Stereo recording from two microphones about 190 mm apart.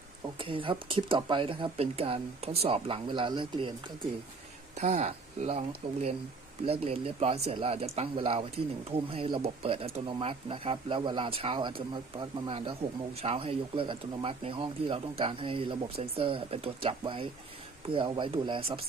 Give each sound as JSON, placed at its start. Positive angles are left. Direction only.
{"t": 0.3, "sound": "speech", "side_deg": -25}
{"t": 4.8, "sound": "speech", "side_deg": -35}